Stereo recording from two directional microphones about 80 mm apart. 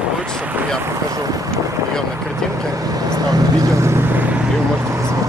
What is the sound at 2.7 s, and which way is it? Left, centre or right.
Vehicle, right.